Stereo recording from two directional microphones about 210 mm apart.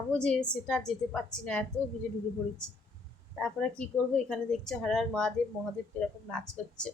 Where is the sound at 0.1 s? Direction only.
5° left (ahead or behind).